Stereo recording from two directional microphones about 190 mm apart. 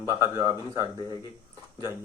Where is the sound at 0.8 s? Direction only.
25° left (ahead or behind).